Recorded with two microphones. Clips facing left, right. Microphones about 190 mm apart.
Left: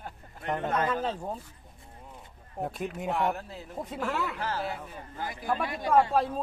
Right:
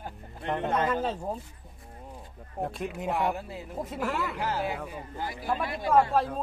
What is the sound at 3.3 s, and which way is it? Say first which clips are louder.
Speech: right 2 dB; 10° right (ahead or behind).